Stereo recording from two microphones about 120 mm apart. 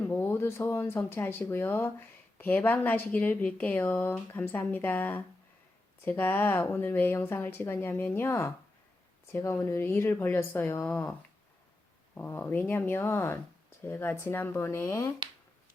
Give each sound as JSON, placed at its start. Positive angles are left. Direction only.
{"t": 0.0, "sound": "speech", "side_deg": 15}
{"t": 12.1, "sound": "speech", "side_deg": 15}